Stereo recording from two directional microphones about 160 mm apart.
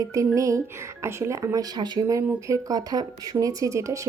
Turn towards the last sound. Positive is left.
turn(degrees=-20)  # may be behind; listen again after turning